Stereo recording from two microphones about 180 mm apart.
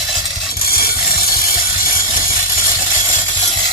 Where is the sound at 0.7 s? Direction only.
55° left (ahead or behind).